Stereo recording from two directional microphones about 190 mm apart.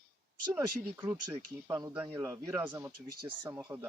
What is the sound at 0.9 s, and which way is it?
Speech, 20° right (ahead or behind).